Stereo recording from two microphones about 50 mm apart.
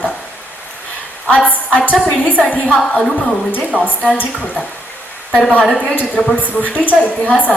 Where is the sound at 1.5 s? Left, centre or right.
Left.